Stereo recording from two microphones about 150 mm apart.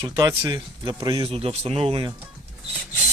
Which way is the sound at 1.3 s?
40° right (ahead or behind).